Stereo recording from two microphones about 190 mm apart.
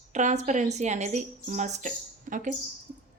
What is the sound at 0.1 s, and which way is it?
A woman's voice, 40° right (ahead or behind).